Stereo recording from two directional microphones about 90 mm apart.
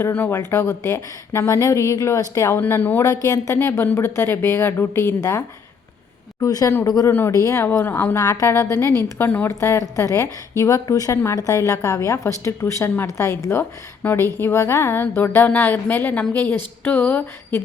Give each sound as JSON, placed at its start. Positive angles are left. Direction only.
{"t": 0.0, "sound": "a woman's voice", "side_deg": 25}
{"t": 0.3, "sound": "a woman's voice", "side_deg": 35}
{"t": 2.6, "sound": "a woman's voice", "side_deg": 25}
{"t": 3.0, "sound": "a woman's voice", "side_deg": 40}
{"t": 3.5, "sound": "a woman's voice", "side_deg": 25}
{"t": 6.4, "sound": "a woman's voice", "side_deg": 40}
{"t": 7.9, "sound": "a woman's voice", "side_deg": 20}
{"t": 8.4, "sound": "a woman's voice", "side_deg": 40}
{"t": 9.1, "sound": "a woman's voice", "side_deg": 25}
{"t": 9.5, "sound": "a woman's voice", "side_deg": 35}